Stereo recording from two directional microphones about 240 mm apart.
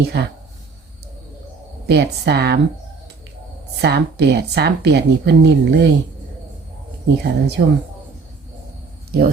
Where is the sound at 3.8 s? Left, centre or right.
Right.